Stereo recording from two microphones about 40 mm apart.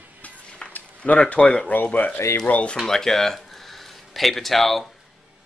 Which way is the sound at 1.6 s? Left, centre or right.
Left.